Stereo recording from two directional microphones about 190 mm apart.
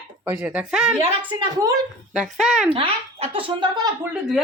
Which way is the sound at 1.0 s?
30° right (ahead or behind).